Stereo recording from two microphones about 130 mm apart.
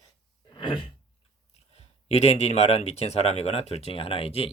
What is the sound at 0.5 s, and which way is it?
Throat clearing, 40° left (ahead or behind).